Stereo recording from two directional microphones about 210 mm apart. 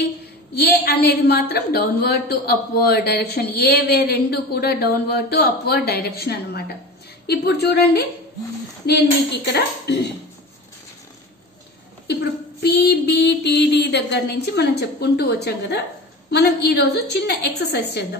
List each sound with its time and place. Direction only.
0.6 s a woman's voice: 50° left (ahead or behind)
12.1 s a woman's voice: 50° left (ahead or behind)